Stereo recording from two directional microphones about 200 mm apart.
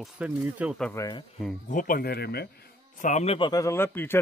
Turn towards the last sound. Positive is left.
turn(degrees=10)  # may be behind; listen again after turning